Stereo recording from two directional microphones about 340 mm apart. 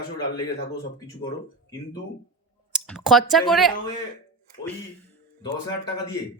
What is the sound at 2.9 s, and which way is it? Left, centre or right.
Speech, centre.